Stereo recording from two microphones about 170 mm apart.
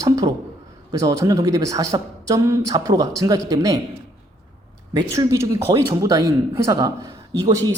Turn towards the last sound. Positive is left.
turn(degrees=-20)  # may be behind; listen again after turning